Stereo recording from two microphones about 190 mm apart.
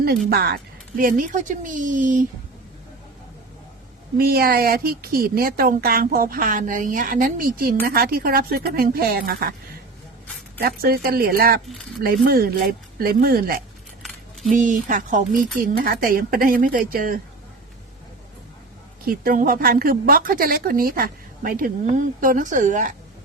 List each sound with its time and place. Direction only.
0.3 s a woman's voice: 55° right (ahead or behind)
4.2 s a woman's voice: 50° right (ahead or behind)
10.6 s a woman's voice: 55° right (ahead or behind)
19.0 s a woman's voice: 50° right (ahead or behind)